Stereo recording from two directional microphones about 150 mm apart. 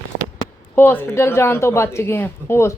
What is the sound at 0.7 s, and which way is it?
Speech, 10° left (ahead or behind).